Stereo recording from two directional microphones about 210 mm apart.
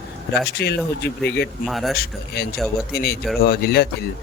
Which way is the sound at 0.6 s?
55° left (ahead or behind).